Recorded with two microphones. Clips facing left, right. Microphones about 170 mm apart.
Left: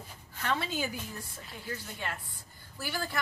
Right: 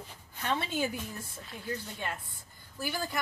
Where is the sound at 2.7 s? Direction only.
20° right (ahead or behind).